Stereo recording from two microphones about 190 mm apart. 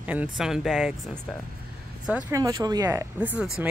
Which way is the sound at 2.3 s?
20° right (ahead or behind).